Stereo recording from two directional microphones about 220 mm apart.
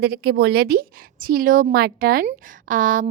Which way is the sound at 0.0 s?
45° right (ahead or behind).